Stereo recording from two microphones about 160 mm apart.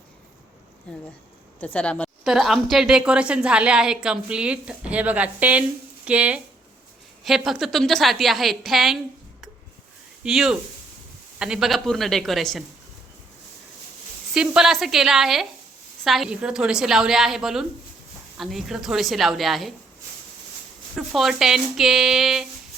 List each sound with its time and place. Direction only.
1.6 s a woman's voice: 10° left (ahead or behind)
10.2 s a woman's voice: 5° right (ahead or behind)
14.3 s a woman's voice: 5° right (ahead or behind)
20.9 s a woman's voice: centre (ahead or behind)